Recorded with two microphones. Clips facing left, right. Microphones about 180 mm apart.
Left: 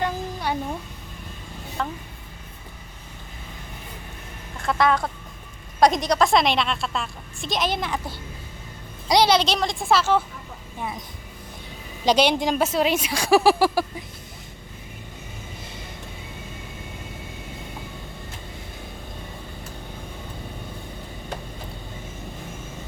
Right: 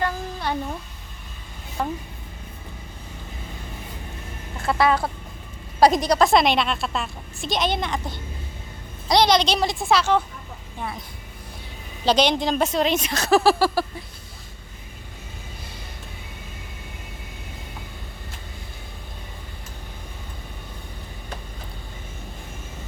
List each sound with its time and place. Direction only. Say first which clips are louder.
0.0 s a sound: even; 10° left (ahead or behind)
1.8 s speech: right 3 dB; 15° right (ahead or behind)
4.5 s a woman's voice: right 1 dB; 5° right (ahead or behind)
10.8 s speech: even; 15° left (ahead or behind)
12.0 s a woman's voice: even; 10° left (ahead or behind)